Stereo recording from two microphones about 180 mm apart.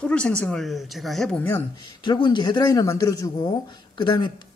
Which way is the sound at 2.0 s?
25° left (ahead or behind).